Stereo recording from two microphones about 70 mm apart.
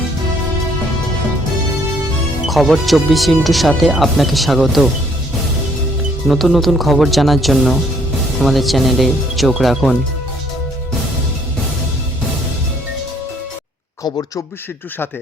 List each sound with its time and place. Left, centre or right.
2.5 s speech: centre
6.2 s speech: centre